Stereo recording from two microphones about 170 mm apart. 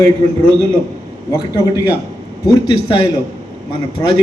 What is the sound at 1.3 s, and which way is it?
Speech, 20° left (ahead or behind).